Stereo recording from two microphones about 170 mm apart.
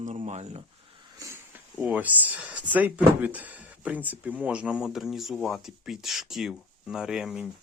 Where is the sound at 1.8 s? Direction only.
10° right (ahead or behind).